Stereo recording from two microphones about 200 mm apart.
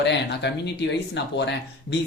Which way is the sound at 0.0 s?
60° left (ahead or behind).